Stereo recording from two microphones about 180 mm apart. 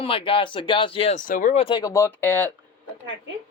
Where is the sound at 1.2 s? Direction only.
45° left (ahead or behind).